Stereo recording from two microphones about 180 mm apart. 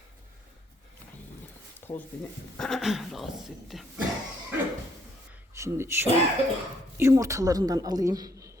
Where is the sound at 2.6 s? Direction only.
Centre (ahead or behind).